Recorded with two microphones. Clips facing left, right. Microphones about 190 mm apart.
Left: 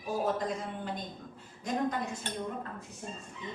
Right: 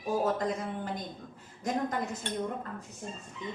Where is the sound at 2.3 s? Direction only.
40° left (ahead or behind).